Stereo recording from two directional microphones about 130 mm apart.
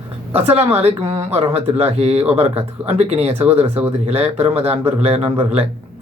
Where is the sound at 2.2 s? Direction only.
15° right (ahead or behind).